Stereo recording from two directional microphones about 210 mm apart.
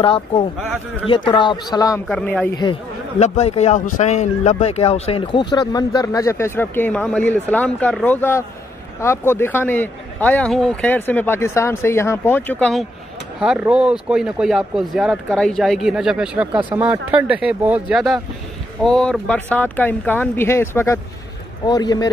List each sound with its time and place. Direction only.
0.0 s speech: 25° left (ahead or behind)
2.0 s speech: 5° left (ahead or behind)
2.5 s speech: 20° left (ahead or behind)